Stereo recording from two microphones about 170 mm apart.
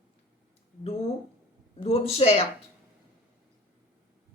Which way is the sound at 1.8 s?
35° left (ahead or behind).